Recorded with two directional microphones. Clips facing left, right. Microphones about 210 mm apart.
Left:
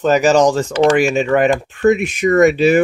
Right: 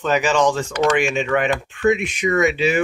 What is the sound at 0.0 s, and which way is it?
Speech, 40° left (ahead or behind).